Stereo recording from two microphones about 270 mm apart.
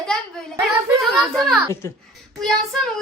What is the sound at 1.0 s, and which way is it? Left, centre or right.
Speech, centre.